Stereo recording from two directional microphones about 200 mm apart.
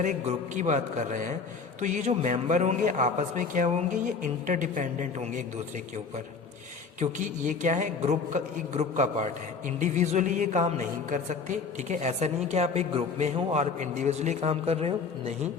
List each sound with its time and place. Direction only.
0.0 s a woman's voice: 40° right (ahead or behind)
7.0 s a woman's voice: 40° right (ahead or behind)